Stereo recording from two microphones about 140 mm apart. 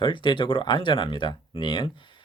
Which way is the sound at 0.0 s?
35° left (ahead or behind).